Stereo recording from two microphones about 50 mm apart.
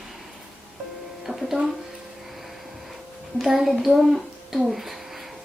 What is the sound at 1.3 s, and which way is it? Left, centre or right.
Speech, centre.